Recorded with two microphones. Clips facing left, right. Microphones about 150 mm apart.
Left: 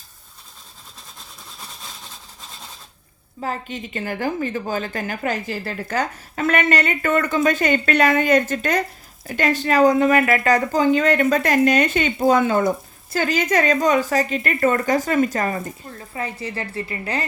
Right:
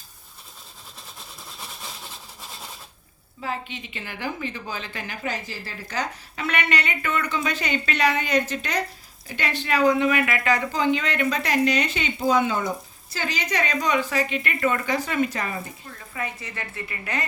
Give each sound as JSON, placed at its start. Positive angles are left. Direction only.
{"t": 3.4, "sound": "a woman's voice", "side_deg": 45}
{"t": 15.9, "sound": "a woman's voice", "side_deg": 30}